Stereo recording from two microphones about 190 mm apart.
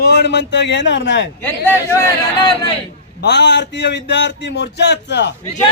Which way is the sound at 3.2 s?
65° left (ahead or behind).